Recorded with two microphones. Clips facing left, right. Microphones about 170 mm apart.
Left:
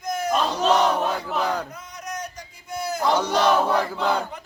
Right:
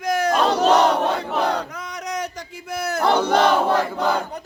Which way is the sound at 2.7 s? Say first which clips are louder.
Right 3 dB; 70° right (ahead or behind).